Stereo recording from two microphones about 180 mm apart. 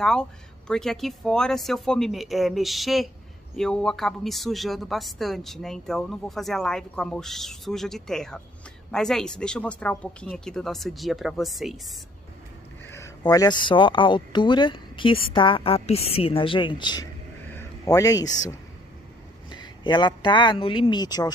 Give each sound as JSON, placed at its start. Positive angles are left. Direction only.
{"t": 0.0, "sound": "speech", "side_deg": 5}
{"t": 12.9, "sound": "a woman's voice", "side_deg": 20}